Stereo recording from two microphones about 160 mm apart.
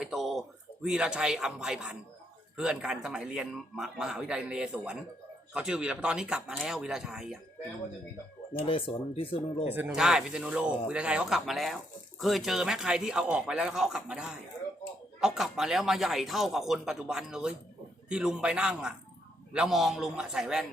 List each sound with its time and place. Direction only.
0.0 s a man's voice: centre (ahead or behind)
8.5 s speech: 35° left (ahead or behind)
9.6 s a man's voice: 10° right (ahead or behind)